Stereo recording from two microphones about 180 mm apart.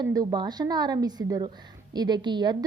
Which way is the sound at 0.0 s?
20° right (ahead or behind).